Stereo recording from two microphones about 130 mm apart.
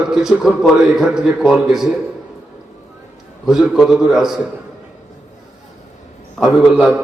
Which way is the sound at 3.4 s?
5° right (ahead or behind).